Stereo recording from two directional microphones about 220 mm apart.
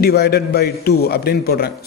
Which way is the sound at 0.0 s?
45° left (ahead or behind).